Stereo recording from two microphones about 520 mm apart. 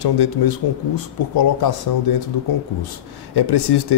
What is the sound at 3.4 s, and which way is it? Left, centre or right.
Speech, left.